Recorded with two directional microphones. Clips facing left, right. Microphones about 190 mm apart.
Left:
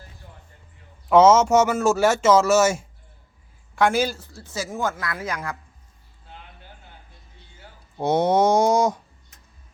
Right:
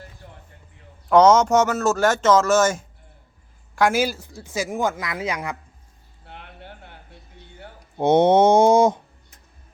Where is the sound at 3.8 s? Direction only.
5° right (ahead or behind).